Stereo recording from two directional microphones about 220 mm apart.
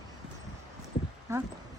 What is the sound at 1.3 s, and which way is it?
Speech, 15° right (ahead or behind).